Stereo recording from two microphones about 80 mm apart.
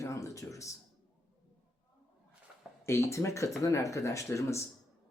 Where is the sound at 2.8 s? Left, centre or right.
Left.